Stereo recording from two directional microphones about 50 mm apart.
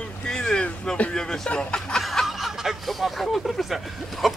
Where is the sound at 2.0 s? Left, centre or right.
Centre.